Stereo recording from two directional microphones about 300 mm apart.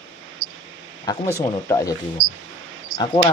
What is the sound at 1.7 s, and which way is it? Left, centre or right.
Speech, centre.